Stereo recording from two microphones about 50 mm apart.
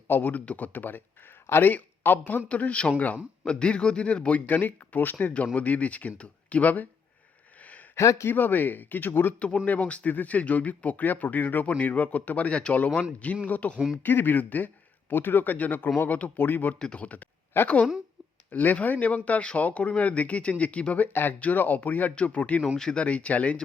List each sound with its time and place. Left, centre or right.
0.1 s speech: left
0.3 s speech: left
1.5 s speech: left
1.7 s speech: left
2.5 s speech: left
7.6 s a sound: left
7.9 s speech: left
8.3 s speech: left
13.7 s speech: centre
14.0 s speech: left
16.7 s speech: left
17.5 s speech: left
18.5 s speech: left
21.3 s speech: left